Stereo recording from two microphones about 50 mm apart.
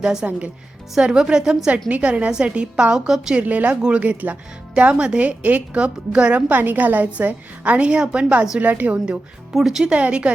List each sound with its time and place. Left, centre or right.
0.0 s a woman's voice: centre
0.3 s a woman's voice: right
0.9 s a woman's voice: centre
3.1 s a woman's voice: centre
3.4 s a woman's voice: right
6.5 s a woman's voice: right
9.6 s speech: centre
9.8 s a woman's voice: right